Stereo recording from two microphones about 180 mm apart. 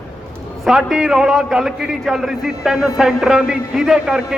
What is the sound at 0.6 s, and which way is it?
A man's voice, 5° right (ahead or behind).